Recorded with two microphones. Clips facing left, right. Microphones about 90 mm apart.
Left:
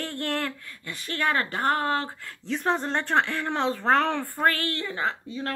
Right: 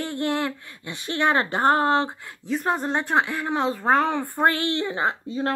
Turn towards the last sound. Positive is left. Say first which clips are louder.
# right 5 dB
turn(degrees=-25)  # may be behind; listen again after turning